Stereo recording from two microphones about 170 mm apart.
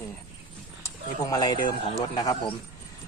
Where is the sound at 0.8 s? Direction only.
20° left (ahead or behind).